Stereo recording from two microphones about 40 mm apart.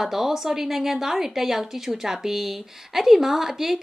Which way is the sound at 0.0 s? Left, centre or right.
Centre.